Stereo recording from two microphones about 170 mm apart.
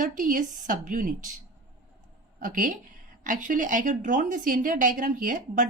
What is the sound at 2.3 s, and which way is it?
A woman's voice, 50° right (ahead or behind).